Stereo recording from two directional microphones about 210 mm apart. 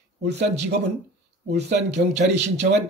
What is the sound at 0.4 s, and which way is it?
Speech, 55° right (ahead or behind).